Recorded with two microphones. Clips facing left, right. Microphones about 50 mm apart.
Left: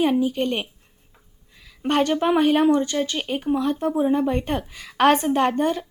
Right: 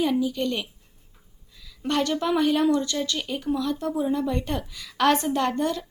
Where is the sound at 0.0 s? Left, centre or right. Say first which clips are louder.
Left 3 dB; left.